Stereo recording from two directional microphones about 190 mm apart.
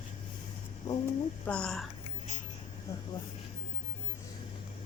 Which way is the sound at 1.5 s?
5° left (ahead or behind).